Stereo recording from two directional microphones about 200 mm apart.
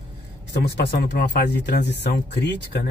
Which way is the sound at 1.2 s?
40° left (ahead or behind).